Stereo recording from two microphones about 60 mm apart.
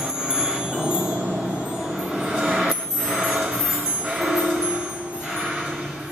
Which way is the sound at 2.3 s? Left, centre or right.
Centre.